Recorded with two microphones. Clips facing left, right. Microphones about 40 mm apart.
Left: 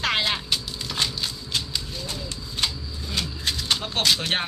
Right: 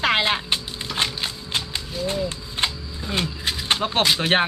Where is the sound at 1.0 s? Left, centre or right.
Right.